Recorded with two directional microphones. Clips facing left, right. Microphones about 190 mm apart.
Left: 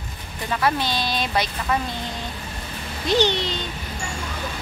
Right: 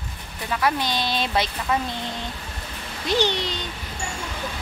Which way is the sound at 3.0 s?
10° right (ahead or behind).